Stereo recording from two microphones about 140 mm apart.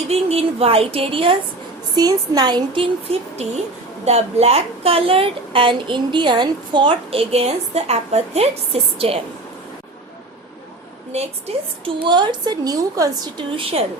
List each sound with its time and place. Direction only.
0.1 s a woman's voice: 45° right (ahead or behind)
2.0 s a woman's voice: 25° right (ahead or behind)
3.1 s a woman's voice: 45° right (ahead or behind)
11.1 s a woman's voice: 50° right (ahead or behind)
12.0 s a woman's voice: 35° right (ahead or behind)
13.6 s a woman's voice: 45° right (ahead or behind)